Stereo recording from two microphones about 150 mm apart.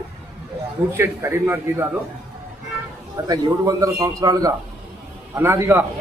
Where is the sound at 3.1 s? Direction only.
25° right (ahead or behind).